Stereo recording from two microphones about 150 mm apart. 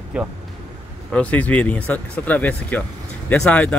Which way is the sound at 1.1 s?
10° left (ahead or behind).